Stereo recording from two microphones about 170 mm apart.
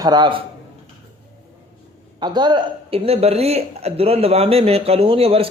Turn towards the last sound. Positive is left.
turn(degrees=-35)  # may be behind; listen again after turning